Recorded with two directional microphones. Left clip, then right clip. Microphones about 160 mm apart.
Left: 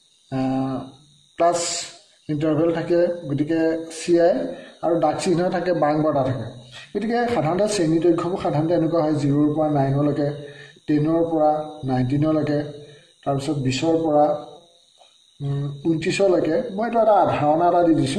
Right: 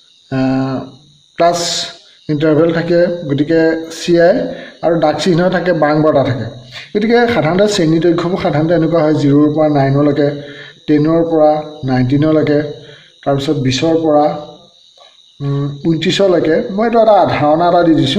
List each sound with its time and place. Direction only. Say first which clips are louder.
0.3 s cricket: right 8 dB; 30° right (ahead or behind)
2.2 s speech: right 9 dB; 30° right (ahead or behind)
16.1 s speech: right 8 dB; 30° right (ahead or behind)